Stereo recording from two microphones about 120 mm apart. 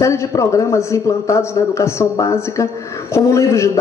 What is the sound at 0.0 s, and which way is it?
A woman's voice, 25° left (ahead or behind).